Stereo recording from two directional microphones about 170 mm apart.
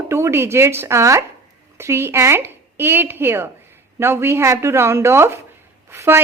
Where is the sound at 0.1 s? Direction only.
15° right (ahead or behind).